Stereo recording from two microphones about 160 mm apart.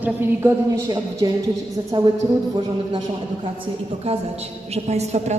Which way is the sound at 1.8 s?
30° right (ahead or behind).